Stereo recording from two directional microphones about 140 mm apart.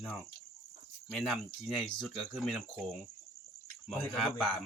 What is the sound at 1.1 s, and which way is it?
Speech, centre (ahead or behind).